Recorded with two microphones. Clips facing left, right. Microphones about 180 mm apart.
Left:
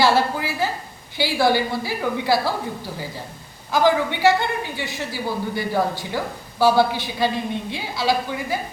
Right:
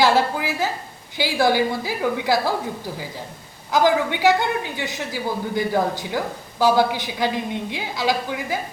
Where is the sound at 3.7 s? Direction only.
15° right (ahead or behind).